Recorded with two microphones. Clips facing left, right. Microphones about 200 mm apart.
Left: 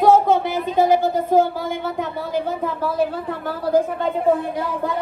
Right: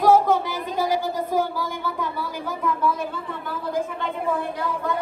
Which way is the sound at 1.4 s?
25° left (ahead or behind).